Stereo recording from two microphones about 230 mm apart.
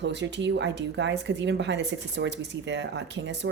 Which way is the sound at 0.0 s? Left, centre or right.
Right.